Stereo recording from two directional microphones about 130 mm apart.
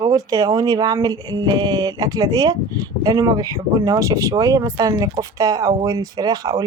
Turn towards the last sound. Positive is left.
turn(degrees=-30)  # may be behind; listen again after turning